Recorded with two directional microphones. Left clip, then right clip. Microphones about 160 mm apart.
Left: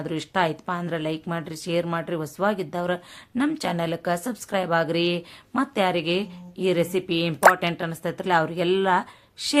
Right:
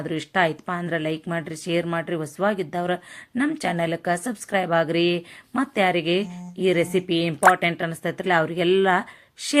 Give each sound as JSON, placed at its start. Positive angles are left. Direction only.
{"t": 0.0, "sound": "speech", "side_deg": -10}